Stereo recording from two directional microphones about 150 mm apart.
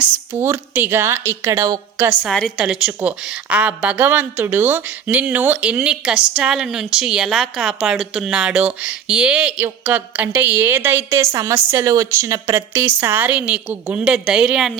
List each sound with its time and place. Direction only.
0.3 s a woman's voice: 15° right (ahead or behind)
2.3 s a woman's voice: 5° left (ahead or behind)
2.6 s a woman's voice: 5° right (ahead or behind)